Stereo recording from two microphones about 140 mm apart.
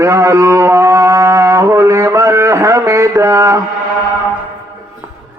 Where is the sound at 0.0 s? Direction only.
20° right (ahead or behind).